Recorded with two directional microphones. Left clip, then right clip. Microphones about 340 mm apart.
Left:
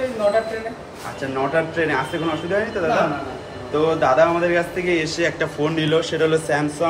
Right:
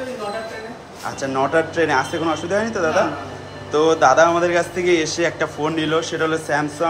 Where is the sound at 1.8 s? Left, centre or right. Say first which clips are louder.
Right 3 dB; centre.